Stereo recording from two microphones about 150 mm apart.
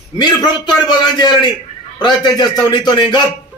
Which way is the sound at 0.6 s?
30° left (ahead or behind).